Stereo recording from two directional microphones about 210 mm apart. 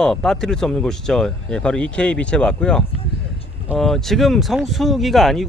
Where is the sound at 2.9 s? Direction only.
25° left (ahead or behind).